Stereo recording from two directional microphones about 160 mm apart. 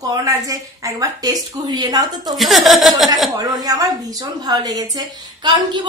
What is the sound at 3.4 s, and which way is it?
Speech, 25° right (ahead or behind).